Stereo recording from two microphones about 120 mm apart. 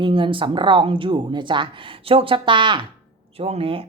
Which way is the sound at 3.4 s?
55° right (ahead or behind).